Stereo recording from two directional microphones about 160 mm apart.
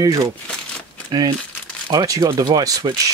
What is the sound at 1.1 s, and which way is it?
Speech, 25° right (ahead or behind).